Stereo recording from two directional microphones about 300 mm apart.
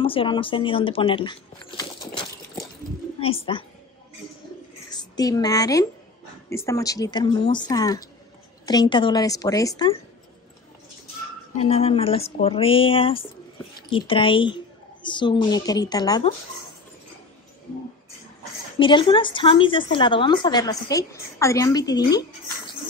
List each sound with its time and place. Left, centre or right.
0.0 s speech: centre
3.5 s a woman's voice: centre
4.9 s a woman's voice: centre
11.5 s a woman's voice: left
18.8 s a woman's voice: centre